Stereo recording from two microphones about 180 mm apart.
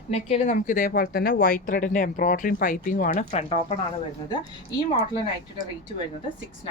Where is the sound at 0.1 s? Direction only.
35° left (ahead or behind).